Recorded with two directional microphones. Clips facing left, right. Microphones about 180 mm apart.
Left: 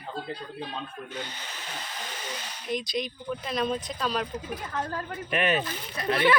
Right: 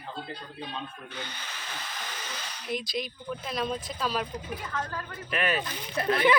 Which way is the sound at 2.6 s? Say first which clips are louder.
Left 2 dB; 5° right (ahead or behind).